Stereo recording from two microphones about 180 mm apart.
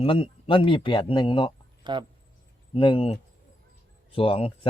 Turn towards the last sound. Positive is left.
turn(degrees=30)  # may be behind; listen again after turning